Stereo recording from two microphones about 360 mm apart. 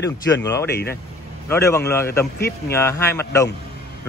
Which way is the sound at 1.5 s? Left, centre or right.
Centre.